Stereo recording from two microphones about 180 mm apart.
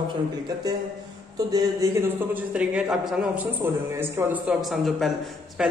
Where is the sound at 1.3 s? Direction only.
20° right (ahead or behind).